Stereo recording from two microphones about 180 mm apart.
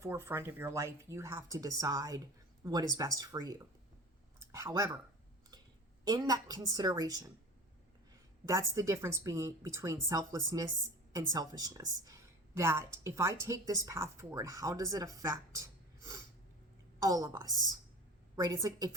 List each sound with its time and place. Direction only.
0.0 s a woman's voice: 15° right (ahead or behind)
6.1 s a woman's voice: 20° right (ahead or behind)
8.4 s a woman's voice: 15° right (ahead or behind)
17.0 s a woman's voice: 20° right (ahead or behind)